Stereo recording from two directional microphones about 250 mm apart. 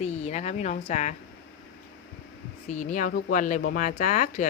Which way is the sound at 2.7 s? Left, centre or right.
Left.